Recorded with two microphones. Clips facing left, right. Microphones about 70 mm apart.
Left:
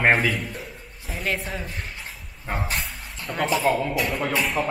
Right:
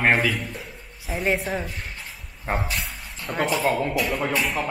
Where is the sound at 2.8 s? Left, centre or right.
Centre.